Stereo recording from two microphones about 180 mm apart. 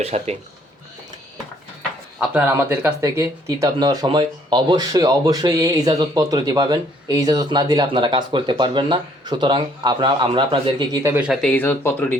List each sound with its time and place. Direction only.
0.0 s speech: 35° right (ahead or behind)
2.1 s speech: 5° right (ahead or behind); by 10.8 s 30° right (ahead or behind)
11.0 s speech: 10° right (ahead or behind)
11.3 s speech: 5° left (ahead or behind)